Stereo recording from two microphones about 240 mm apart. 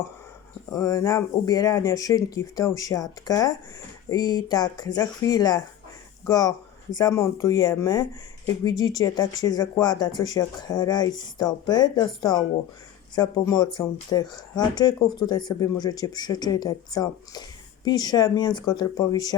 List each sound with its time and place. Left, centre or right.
0.7 s speech: centre